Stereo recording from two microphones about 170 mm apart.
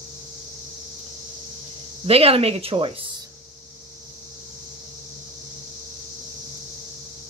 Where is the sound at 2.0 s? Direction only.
35° right (ahead or behind).